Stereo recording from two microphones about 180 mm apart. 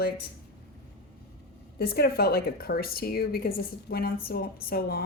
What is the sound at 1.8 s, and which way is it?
A woman's voice, 60° left (ahead or behind).